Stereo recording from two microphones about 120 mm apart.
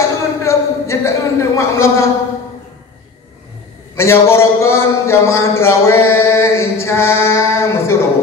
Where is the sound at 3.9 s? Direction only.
20° left (ahead or behind).